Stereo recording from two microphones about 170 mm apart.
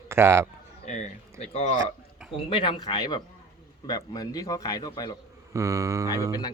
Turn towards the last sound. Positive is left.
turn(degrees=-20)  # may be behind; listen again after turning